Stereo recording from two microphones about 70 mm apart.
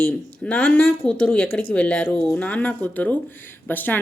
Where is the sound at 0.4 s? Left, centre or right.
Centre.